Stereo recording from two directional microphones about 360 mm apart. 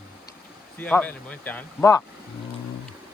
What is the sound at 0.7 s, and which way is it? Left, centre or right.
Speech, centre.